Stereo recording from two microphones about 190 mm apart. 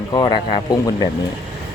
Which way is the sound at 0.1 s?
20° left (ahead or behind).